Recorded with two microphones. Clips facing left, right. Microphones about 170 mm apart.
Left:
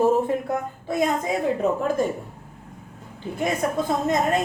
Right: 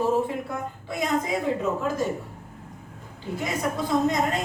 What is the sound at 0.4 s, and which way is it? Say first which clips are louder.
Speech: left 6 dB; 50° left (ahead or behind).